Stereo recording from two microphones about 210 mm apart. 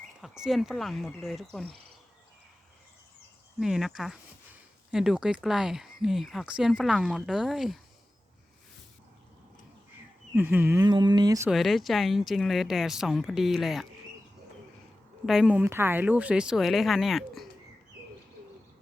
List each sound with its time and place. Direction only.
0.2 s speech: centre (ahead or behind)
3.6 s speech: centre (ahead or behind)
10.3 s speech: 10° right (ahead or behind)
11.4 s speech: centre (ahead or behind)
15.3 s speech: 5° right (ahead or behind)